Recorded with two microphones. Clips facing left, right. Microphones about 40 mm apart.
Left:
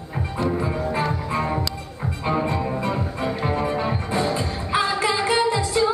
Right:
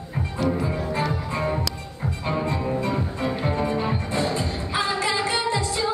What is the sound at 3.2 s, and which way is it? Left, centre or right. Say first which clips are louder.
Music: left 1 dB; centre.